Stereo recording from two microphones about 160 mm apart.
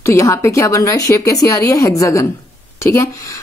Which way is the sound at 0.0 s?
20° left (ahead or behind).